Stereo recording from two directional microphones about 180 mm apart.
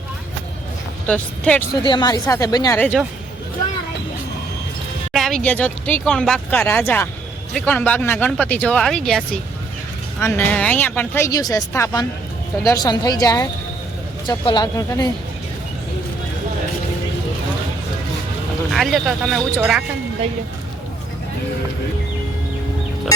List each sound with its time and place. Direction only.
1.0 s speech: 5° left (ahead or behind)
1.8 s speech: 25° left (ahead or behind)
2.8 s speech: 5° left (ahead or behind)
5.1 s speech: centre (ahead or behind); by 15.1 s 20° left (ahead or behind)
18.7 s speech: centre (ahead or behind)